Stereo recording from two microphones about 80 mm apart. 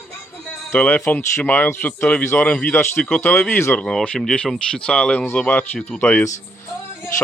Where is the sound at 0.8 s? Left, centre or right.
Centre.